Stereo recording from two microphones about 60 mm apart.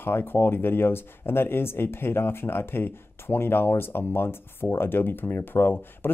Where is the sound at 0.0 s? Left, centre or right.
Left.